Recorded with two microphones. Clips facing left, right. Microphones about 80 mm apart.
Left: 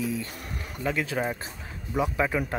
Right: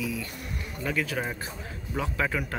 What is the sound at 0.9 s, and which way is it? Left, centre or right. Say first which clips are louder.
Speech: left 2 dB; left.